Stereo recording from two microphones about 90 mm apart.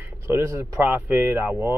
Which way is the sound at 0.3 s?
30° right (ahead or behind).